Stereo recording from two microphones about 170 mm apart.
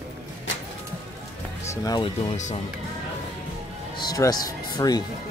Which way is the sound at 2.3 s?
45° left (ahead or behind).